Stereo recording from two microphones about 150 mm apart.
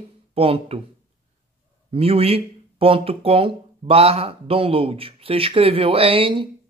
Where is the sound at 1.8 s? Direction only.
40° right (ahead or behind).